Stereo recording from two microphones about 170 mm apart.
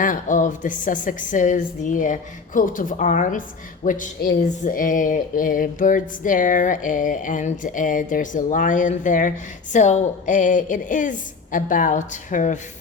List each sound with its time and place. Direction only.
0.0 s speech: 50° left (ahead or behind)